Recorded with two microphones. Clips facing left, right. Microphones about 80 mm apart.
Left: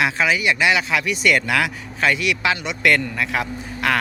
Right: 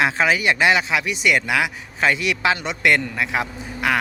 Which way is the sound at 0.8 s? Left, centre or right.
Right.